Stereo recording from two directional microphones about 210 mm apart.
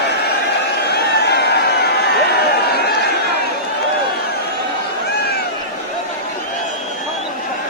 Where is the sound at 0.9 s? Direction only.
55° left (ahead or behind).